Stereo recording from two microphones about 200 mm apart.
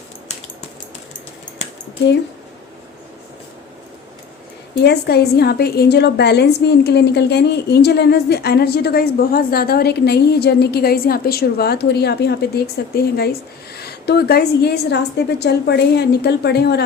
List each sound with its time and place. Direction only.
4.8 s a woman's voice: 55° left (ahead or behind)